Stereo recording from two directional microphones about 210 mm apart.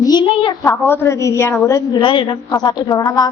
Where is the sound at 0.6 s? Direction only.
10° left (ahead or behind).